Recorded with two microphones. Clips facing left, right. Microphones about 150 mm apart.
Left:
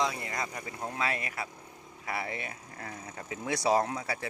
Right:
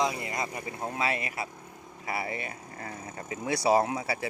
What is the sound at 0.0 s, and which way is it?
Speech, 15° right (ahead or behind).